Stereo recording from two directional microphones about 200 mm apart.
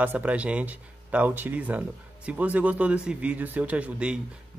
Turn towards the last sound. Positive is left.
turn(degrees=-5)  # may be behind; listen again after turning